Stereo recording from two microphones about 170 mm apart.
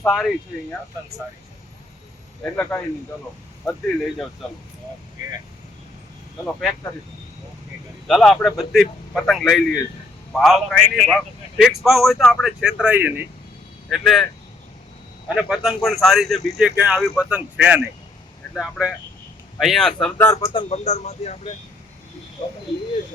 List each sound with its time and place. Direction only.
0.0 s a man's voice: centre (ahead or behind)
2.4 s a man's voice: 10° left (ahead or behind)
8.0 s a man's voice: centre (ahead or behind)
13.9 s a man's voice: centre (ahead or behind)
15.4 s a man's voice: centre (ahead or behind)
20.2 s a man's voice: 20° left (ahead or behind)
20.7 s speech: 40° left (ahead or behind)